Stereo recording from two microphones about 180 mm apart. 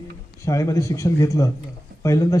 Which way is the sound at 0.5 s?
20° left (ahead or behind).